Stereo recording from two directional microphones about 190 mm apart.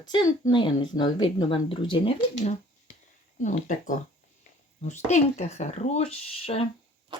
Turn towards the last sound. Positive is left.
turn(degrees=30)  # may be behind; listen again after turning